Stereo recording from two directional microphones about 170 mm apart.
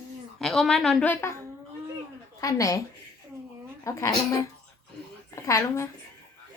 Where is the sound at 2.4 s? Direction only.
20° left (ahead or behind).